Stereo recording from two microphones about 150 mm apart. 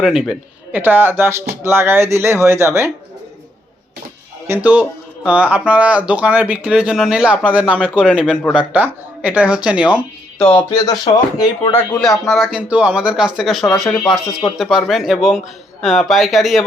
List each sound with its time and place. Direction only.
0.0 s speech: 5° right (ahead or behind)
4.4 s speech: 10° right (ahead or behind)
10.3 s speech: 5° left (ahead or behind)
10.8 s speech: 25° left (ahead or behind)
11.8 s speech: 5° left (ahead or behind)